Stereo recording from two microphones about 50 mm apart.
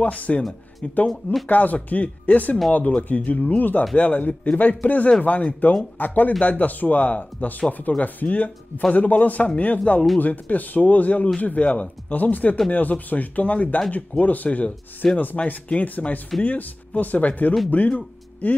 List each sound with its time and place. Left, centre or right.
0.0 s speech: left
0.4 s speech: centre
1.5 s speech: left